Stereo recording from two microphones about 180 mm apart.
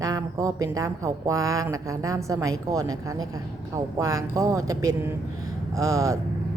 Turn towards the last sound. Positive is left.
turn(degrees=-20)  # may be behind; listen again after turning